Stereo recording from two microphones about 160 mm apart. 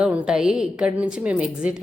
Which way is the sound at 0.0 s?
5° right (ahead or behind).